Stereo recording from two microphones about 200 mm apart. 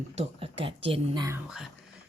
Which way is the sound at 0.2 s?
25° right (ahead or behind).